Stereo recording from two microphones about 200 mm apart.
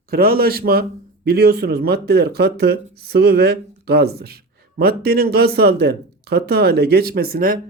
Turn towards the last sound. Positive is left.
turn(degrees=-45)  # may be behind; listen again after turning